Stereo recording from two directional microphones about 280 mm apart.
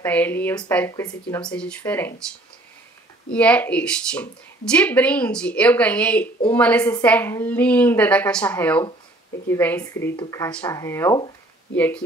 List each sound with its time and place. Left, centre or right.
0.0 s speech: centre
3.3 s speech: centre